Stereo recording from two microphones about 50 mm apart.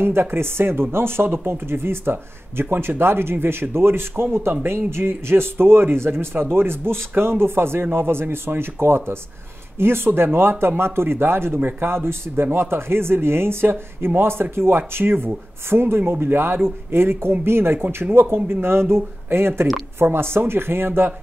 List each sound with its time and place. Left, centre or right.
0.0 s speech: right